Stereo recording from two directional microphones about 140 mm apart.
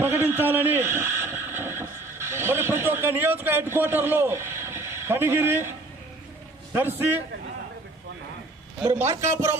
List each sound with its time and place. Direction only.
0.0 s a sound: 15° right (ahead or behind)
7.0 s a man's voice: 15° right (ahead or behind)
8.9 s a man's voice: 20° right (ahead or behind)